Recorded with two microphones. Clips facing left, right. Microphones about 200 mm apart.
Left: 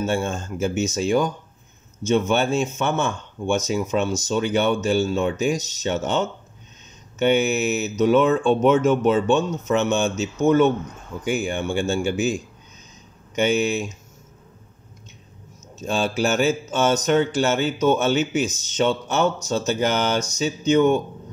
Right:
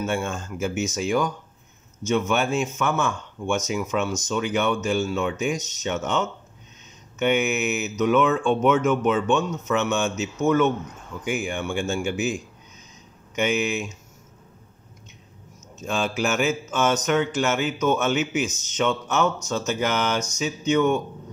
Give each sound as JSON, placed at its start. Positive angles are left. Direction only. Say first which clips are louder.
{"t": 0.0, "sound": "speech", "louder": "left 3 dB", "side_deg": 30}
{"t": 15.8, "sound": "speech", "louder": "left 3 dB", "side_deg": 35}